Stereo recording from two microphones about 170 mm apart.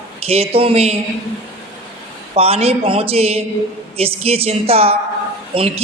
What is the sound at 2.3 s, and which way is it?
A man's voice, 35° right (ahead or behind).